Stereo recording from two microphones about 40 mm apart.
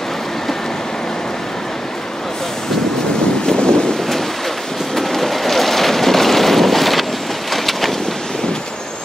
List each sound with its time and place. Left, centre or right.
3.4 s wind noise: left
4.9 s wind noise: centre
7.5 s vehicle: centre